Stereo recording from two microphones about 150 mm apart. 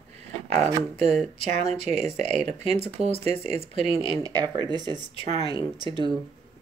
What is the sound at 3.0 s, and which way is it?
Speech, 45° right (ahead or behind).